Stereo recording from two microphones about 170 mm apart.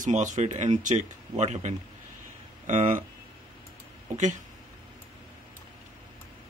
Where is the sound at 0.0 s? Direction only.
50° right (ahead or behind).